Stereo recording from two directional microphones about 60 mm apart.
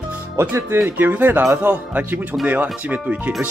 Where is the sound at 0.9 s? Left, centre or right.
Right.